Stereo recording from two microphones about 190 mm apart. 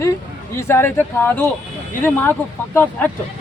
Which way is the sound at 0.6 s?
15° left (ahead or behind).